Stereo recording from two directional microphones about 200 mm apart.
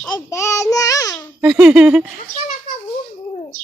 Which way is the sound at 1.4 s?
5° right (ahead or behind).